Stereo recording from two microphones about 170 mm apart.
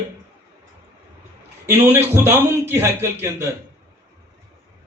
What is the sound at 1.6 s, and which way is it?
A man's voice, 15° right (ahead or behind).